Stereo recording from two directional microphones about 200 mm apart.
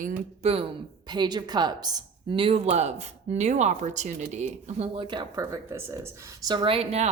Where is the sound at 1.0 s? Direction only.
20° right (ahead or behind).